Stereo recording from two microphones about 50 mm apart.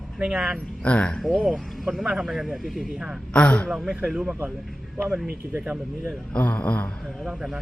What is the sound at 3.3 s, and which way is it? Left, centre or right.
Speech, left.